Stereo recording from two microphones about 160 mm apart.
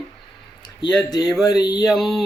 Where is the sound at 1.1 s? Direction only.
25° left (ahead or behind).